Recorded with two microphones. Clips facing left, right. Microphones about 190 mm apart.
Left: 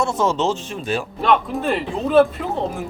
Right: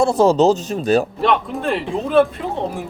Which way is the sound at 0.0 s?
35° right (ahead or behind).